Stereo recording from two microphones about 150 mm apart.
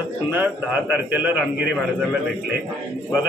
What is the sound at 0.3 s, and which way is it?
A man's voice, 10° right (ahead or behind).